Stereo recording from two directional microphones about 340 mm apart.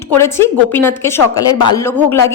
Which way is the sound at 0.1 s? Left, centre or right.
Centre.